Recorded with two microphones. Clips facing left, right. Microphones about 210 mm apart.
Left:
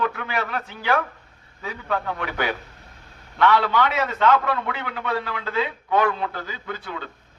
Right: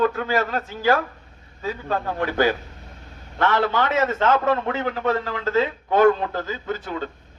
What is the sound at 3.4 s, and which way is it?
A man's voice, 45° right (ahead or behind).